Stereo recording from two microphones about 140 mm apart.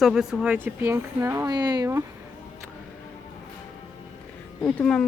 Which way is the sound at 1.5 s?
30° right (ahead or behind).